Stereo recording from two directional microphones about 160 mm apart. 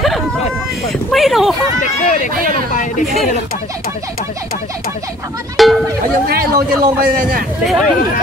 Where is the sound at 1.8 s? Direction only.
55° left (ahead or behind).